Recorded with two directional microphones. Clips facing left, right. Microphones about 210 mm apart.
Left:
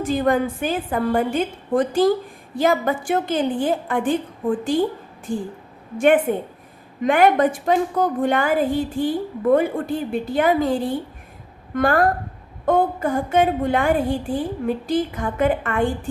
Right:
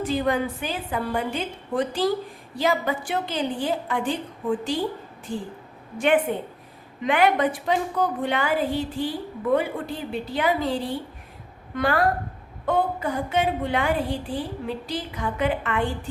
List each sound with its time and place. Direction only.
0.0 s a woman's voice: 50° left (ahead or behind)